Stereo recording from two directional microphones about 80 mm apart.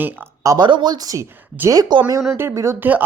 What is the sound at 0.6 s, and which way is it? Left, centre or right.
Speech, right.